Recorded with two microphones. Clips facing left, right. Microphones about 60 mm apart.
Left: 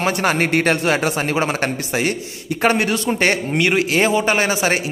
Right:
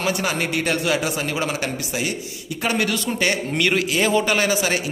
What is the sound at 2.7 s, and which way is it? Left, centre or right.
A man's voice, left.